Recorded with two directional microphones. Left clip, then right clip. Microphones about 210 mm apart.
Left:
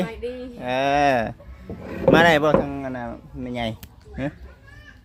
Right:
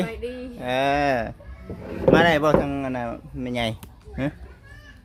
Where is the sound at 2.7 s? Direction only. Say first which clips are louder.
Right 2 dB; 10° right (ahead or behind).